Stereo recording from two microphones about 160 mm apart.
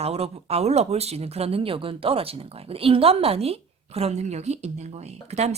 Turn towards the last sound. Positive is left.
turn(degrees=-40)  # may be behind; listen again after turning